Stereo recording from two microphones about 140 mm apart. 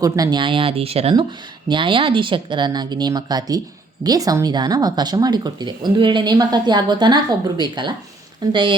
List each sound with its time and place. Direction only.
0.0 s speech: 30° right (ahead or behind)